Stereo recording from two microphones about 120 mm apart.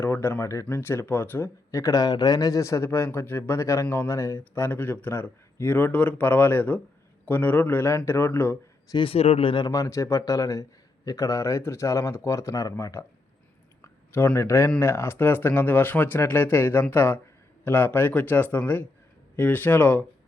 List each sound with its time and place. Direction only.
0.0 s speech: 20° left (ahead or behind)
8.9 s speech: 45° left (ahead or behind); by 20.1 s 15° left (ahead or behind)